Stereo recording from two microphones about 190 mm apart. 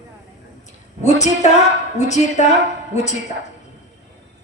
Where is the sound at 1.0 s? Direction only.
35° left (ahead or behind).